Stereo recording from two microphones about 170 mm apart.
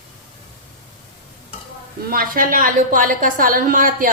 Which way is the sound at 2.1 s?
60° right (ahead or behind).